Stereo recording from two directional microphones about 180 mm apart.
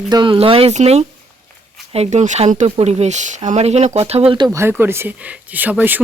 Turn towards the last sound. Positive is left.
turn(degrees=-10)  # may be behind; listen again after turning